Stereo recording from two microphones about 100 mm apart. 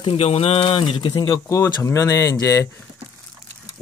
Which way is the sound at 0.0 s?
85° left.